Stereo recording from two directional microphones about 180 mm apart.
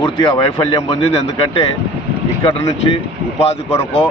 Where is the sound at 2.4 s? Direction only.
30° left (ahead or behind).